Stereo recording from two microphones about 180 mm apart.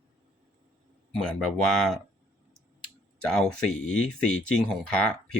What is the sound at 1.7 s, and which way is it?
Speech, centre (ahead or behind).